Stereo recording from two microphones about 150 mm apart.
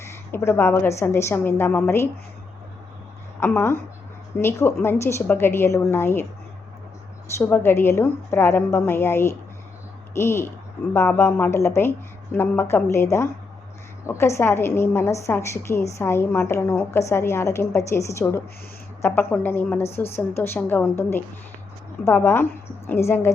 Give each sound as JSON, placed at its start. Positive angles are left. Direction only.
{"t": 0.0, "sound": "a woman's voice", "side_deg": 15}
{"t": 3.4, "sound": "a woman's voice", "side_deg": 15}
{"t": 7.3, "sound": "a woman's voice", "side_deg": 15}